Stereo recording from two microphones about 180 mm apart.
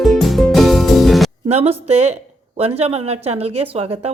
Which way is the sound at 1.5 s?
35° right (ahead or behind).